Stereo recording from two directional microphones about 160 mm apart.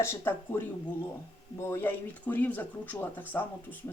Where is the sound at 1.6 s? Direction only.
15° left (ahead or behind).